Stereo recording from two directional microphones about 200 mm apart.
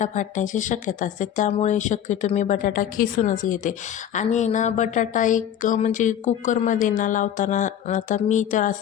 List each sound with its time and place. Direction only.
0.0 s speech: 40° left (ahead or behind)